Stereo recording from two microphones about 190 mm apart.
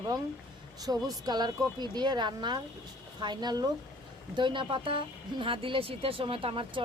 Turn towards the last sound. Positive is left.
turn(degrees=-30)  # may be behind; listen again after turning